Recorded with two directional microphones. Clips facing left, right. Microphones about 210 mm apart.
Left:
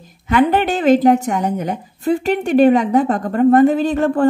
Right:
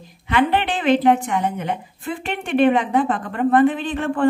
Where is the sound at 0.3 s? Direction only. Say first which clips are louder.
Left 5 dB; 45° left (ahead or behind).